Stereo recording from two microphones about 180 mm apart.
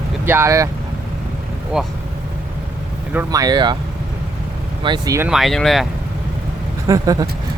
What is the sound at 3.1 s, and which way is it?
Speech, 15° right (ahead or behind).